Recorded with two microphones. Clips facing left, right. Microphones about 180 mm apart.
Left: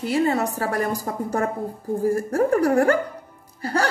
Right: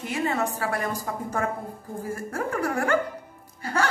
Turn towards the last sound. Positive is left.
turn(degrees=35)  # may be behind; listen again after turning